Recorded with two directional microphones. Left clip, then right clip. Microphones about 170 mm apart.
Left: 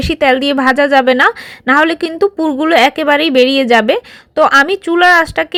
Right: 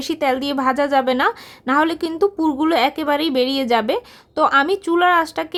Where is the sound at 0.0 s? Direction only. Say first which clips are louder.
Left 9 dB; 20° left (ahead or behind).